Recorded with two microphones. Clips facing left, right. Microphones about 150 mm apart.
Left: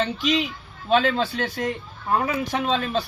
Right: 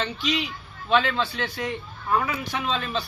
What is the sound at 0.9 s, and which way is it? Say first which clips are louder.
A man's voice: left 3 dB; 45° left (ahead or behind).